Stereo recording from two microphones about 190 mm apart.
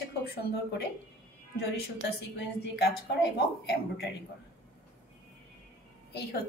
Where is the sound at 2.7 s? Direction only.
60° left (ahead or behind).